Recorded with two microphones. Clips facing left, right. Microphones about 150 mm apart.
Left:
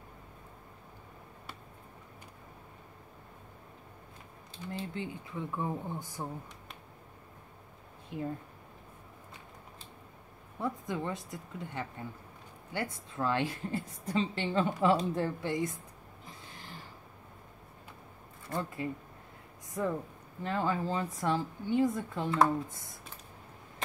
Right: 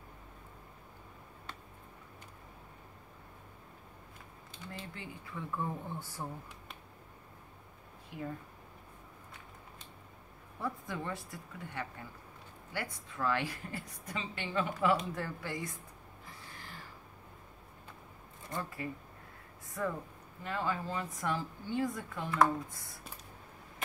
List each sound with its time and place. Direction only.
4.5 s speech: 25° left (ahead or behind)
10.6 s a woman's voice: 20° left (ahead or behind)
16.3 s a sound: 20° left (ahead or behind)
18.5 s a woman's voice: 20° left (ahead or behind)
20.4 s a woman's voice: 30° left (ahead or behind)